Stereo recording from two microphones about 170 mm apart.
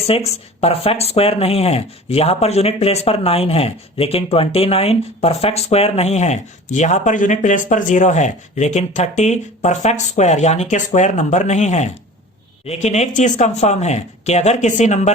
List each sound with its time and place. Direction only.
0.1 s speech: 35° left (ahead or behind)